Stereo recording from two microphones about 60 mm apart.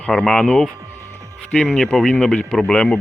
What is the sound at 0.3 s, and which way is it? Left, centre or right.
Speech, centre.